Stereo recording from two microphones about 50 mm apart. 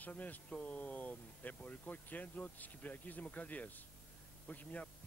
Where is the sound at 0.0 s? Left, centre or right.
Left.